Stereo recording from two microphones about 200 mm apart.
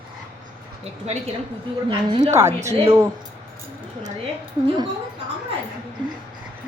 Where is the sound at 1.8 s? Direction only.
30° right (ahead or behind).